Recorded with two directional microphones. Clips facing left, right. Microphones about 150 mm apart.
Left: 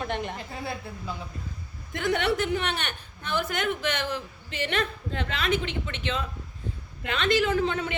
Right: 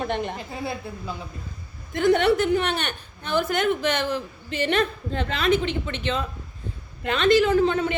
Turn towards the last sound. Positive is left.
turn(degrees=-35)  # may be behind; listen again after turning